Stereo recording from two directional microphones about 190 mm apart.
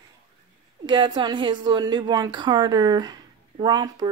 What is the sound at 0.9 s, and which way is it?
Speech, 25° right (ahead or behind).